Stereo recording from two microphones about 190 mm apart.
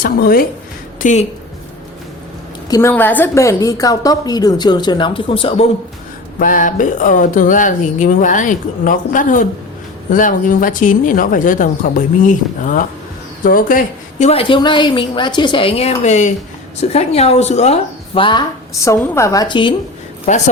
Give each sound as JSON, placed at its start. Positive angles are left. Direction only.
{"t": 0.0, "sound": "speech", "side_deg": 50}
{"t": 2.6, "sound": "a woman's voice", "side_deg": 20}
{"t": 6.4, "sound": "speech", "side_deg": 45}
{"t": 14.3, "sound": "a woman's voice", "side_deg": 30}
{"t": 18.9, "sound": "a woman's voice", "side_deg": 15}
{"t": 20.3, "sound": "speech", "side_deg": 40}